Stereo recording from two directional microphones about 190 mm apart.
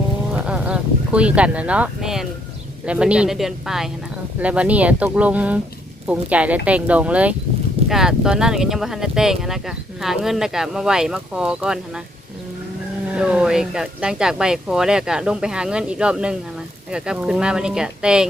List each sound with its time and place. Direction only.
0.3 s a sound: 5° right (ahead or behind)
2.8 s speech: 5° right (ahead or behind)
13.1 s speech: 5° right (ahead or behind)